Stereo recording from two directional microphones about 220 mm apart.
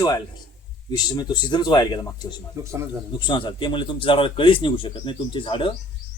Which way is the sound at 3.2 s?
20° left (ahead or behind).